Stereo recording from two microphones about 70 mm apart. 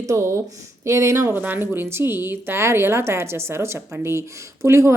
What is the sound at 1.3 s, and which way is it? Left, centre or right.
A woman's voice, right.